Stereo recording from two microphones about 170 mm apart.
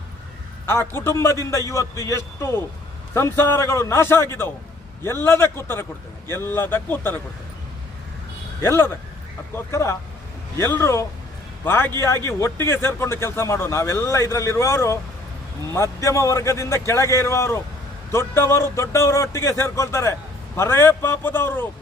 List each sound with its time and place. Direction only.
0.6 s a man's voice: 15° left (ahead or behind)
8.6 s a man's voice: 15° left (ahead or behind)